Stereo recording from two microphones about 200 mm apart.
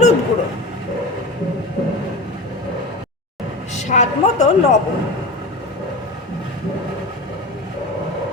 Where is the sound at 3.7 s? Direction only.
35° left (ahead or behind).